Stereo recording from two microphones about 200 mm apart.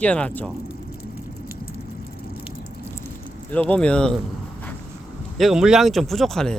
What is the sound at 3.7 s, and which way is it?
Speech, 5° left (ahead or behind).